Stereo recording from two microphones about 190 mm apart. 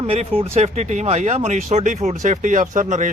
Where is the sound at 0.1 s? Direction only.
35° right (ahead or behind).